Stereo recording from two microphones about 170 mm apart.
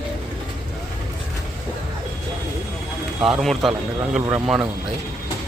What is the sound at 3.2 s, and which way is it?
A man's voice, centre (ahead or behind).